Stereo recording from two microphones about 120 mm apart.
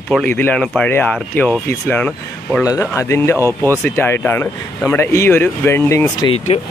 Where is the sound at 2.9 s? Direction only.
20° left (ahead or behind).